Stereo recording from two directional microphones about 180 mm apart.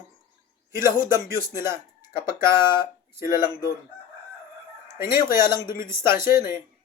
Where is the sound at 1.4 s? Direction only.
15° right (ahead or behind).